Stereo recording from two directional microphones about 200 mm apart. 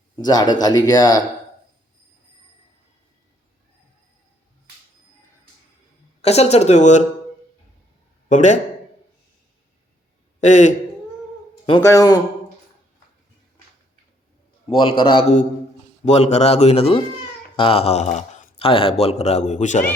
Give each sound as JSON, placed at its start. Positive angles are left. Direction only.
{"t": 0.2, "sound": "a man's voice", "side_deg": 20}
{"t": 6.2, "sound": "a man's voice", "side_deg": 30}
{"t": 8.3, "sound": "a man's voice", "side_deg": 35}
{"t": 10.4, "sound": "a man's voice", "side_deg": 35}
{"t": 11.8, "sound": "a man's voice", "side_deg": 15}
{"t": 14.7, "sound": "a man's voice", "side_deg": 25}
{"t": 18.7, "sound": "a man's voice", "side_deg": 25}